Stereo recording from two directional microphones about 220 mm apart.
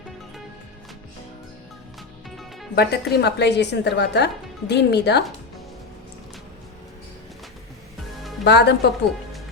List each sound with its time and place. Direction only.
2.3 s music: centre (ahead or behind)
2.7 s a woman's voice: 45° left (ahead or behind)
8.4 s a woman's voice: 50° left (ahead or behind)